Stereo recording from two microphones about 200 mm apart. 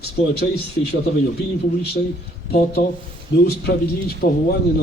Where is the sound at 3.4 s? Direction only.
50° left (ahead or behind).